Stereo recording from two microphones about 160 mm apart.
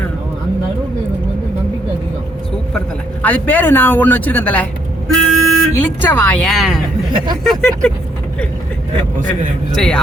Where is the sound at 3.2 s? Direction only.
10° left (ahead or behind).